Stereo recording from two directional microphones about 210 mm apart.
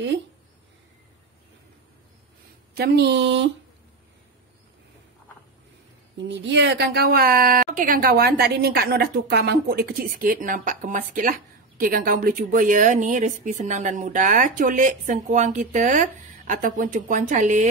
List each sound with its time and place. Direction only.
2.7 s a woman's voice: 50° right (ahead or behind)
6.1 s a woman's voice: 55° right (ahead or behind); by 17.6 s 35° right (ahead or behind)